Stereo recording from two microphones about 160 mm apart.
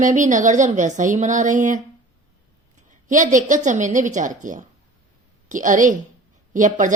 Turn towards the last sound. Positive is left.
turn(degrees=-50)  # may be behind; listen again after turning